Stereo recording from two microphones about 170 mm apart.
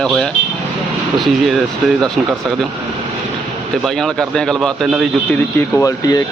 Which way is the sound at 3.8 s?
Centre (ahead or behind).